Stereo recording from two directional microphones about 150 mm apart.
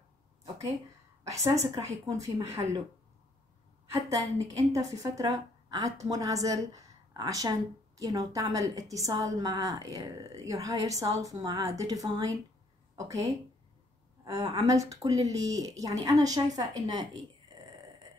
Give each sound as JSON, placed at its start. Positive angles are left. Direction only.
{"t": 1.3, "sound": "a woman's voice", "side_deg": -20}
{"t": 3.9, "sound": "a woman's voice", "side_deg": -20}